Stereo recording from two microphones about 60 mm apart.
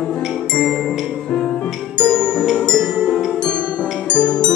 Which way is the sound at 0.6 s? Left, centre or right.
Centre.